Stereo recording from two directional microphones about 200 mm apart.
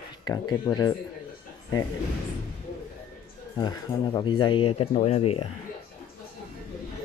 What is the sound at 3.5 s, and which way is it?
Speech, 20° left (ahead or behind).